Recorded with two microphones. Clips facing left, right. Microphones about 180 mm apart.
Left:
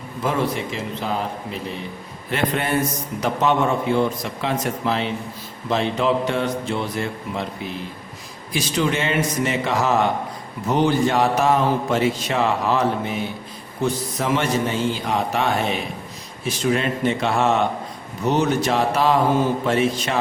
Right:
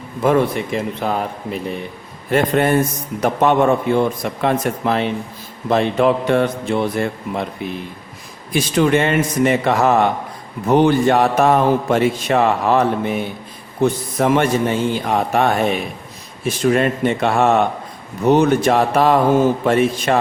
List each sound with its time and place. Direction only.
0.2 s a man's voice: 55° right (ahead or behind)
2.3 s a man's voice: 45° right (ahead or behind)
8.5 s a man's voice: 55° right (ahead or behind)